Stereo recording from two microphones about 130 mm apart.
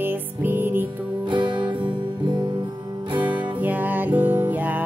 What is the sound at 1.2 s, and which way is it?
Music, 40° right (ahead or behind).